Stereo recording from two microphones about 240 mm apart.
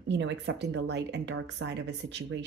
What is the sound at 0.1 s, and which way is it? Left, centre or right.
Speech, right.